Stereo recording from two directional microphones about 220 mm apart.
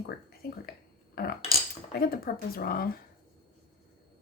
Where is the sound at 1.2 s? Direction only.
45° left (ahead or behind).